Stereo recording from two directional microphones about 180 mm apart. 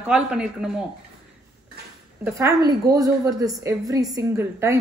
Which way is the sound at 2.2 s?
15° right (ahead or behind).